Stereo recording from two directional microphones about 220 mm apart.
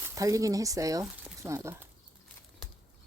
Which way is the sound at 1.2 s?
10° right (ahead or behind).